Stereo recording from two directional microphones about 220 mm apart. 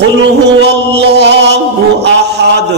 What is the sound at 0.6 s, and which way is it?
Music, 50° right (ahead or behind).